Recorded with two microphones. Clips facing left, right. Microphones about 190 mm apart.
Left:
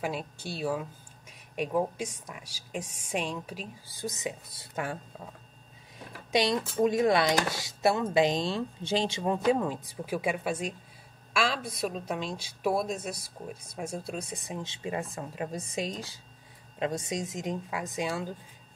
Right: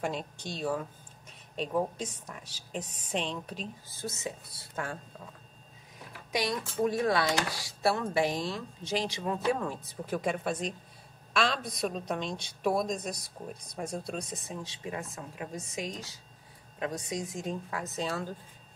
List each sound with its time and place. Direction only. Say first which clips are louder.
0.0 s a woman's voice: left 1 dB; 5° left (ahead or behind)
6.5 s a woman's voice: left 4 dB; 20° left (ahead or behind)